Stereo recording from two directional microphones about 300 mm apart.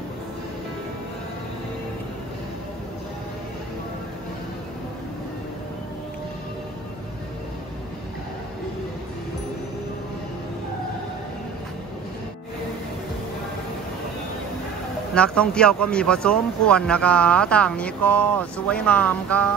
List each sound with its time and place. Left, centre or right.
15.1 s speech: centre